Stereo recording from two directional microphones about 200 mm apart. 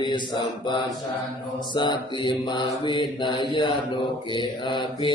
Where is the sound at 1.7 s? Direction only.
25° left (ahead or behind).